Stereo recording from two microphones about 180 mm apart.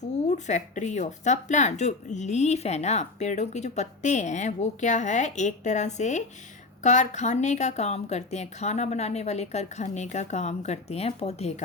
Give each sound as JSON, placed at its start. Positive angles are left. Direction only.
{"t": 0.3, "sound": "speech", "side_deg": 40}